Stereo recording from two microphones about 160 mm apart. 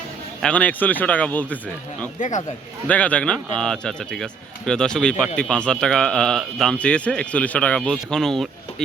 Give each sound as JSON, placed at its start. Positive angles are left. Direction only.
{"t": 0.4, "sound": "speech", "side_deg": 10}
{"t": 2.1, "sound": "speech", "side_deg": 50}
{"t": 2.8, "sound": "speech", "side_deg": 10}